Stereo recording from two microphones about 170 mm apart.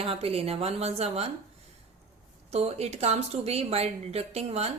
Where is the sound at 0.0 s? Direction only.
35° right (ahead or behind).